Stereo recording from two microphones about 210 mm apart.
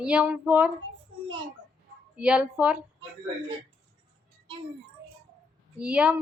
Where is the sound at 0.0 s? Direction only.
5° right (ahead or behind).